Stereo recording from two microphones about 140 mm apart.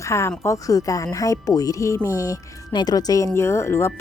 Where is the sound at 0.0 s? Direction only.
20° left (ahead or behind).